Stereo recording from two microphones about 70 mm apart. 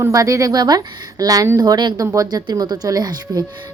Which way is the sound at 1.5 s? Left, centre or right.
Right.